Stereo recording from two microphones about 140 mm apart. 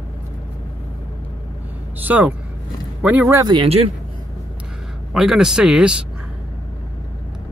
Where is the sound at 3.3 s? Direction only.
30° right (ahead or behind).